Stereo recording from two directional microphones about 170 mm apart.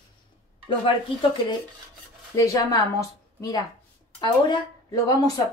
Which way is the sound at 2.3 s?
20° left (ahead or behind).